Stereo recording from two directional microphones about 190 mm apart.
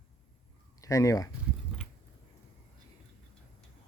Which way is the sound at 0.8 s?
15° left (ahead or behind).